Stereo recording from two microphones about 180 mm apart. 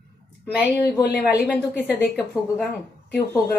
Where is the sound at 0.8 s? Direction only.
70° left (ahead or behind).